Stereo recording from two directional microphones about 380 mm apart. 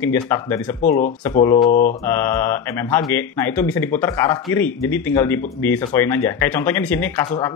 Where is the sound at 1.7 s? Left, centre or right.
Left.